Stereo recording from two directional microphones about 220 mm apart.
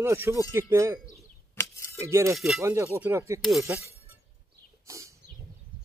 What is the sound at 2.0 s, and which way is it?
Speech, 15° right (ahead or behind).